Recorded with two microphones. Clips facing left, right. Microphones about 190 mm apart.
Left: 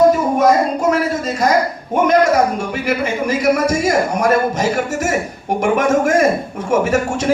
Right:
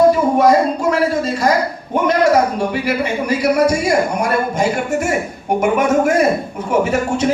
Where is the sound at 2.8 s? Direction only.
45° left (ahead or behind).